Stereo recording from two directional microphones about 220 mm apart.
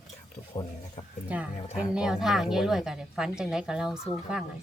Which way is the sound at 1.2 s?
5° right (ahead or behind).